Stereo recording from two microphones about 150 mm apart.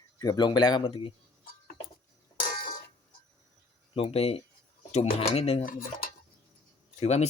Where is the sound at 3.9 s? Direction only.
40° left (ahead or behind).